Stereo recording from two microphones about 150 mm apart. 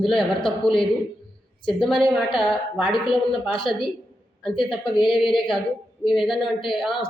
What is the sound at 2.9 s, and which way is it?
Speech, 35° left (ahead or behind).